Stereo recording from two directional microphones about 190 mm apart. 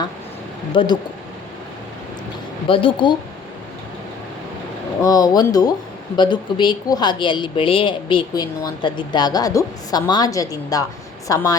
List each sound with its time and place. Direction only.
0.7 s speech: 25° left (ahead or behind)
2.6 s speech: 25° left (ahead or behind)
5.0 s speech: 20° left (ahead or behind)